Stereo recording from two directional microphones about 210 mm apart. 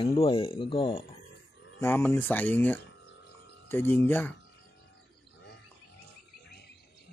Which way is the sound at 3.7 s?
10° left (ahead or behind).